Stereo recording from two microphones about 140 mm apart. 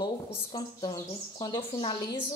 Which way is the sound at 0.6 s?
30° left (ahead or behind).